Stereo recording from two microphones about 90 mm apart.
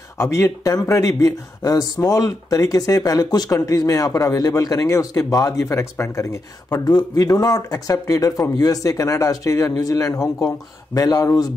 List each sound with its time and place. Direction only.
0.2 s speech: 35° left (ahead or behind)
6.8 s speech: 50° left (ahead or behind)